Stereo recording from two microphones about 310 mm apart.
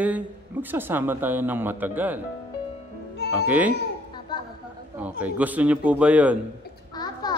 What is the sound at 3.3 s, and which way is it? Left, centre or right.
Speech, centre.